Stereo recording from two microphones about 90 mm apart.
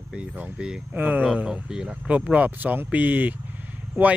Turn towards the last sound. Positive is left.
turn(degrees=-15)  # may be behind; listen again after turning